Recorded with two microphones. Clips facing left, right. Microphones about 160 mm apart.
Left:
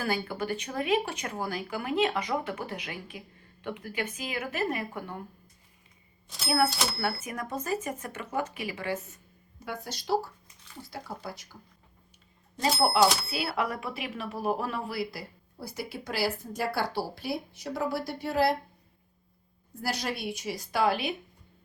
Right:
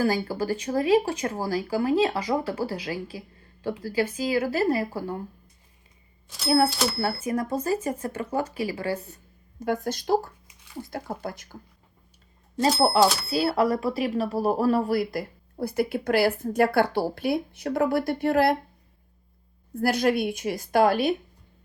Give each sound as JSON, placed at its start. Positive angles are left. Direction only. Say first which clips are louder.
{"t": 0.0, "sound": "speech", "louder": "right 6 dB", "side_deg": -35}
{"t": 6.7, "sound": "speech", "louder": "right 5 dB", "side_deg": 0}
{"t": 7.0, "sound": "speech", "louder": "right 6 dB", "side_deg": -30}
{"t": 9.6, "sound": "a woman's voice", "louder": "right 11 dB", "side_deg": -50}
{"t": 12.8, "sound": "speech", "louder": "right 2 dB", "side_deg": -30}
{"t": 19.7, "sound": "a woman's voice", "louder": "right 10 dB", "side_deg": -55}